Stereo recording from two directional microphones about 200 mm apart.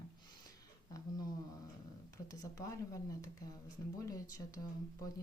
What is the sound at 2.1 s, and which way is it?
Speech, 15° left (ahead or behind).